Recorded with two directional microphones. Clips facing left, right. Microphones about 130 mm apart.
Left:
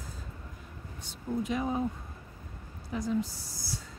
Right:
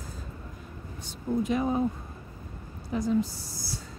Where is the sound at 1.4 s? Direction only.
45° right (ahead or behind).